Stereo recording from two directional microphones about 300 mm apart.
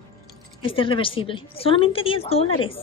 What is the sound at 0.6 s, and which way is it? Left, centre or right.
A woman's voice, centre.